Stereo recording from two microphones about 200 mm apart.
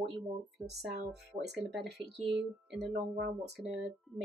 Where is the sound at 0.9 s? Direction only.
55° right (ahead or behind).